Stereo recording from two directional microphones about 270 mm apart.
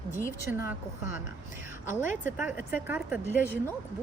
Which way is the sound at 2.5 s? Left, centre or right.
Centre.